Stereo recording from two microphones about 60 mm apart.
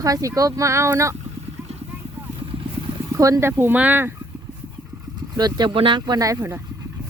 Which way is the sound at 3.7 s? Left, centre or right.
Right.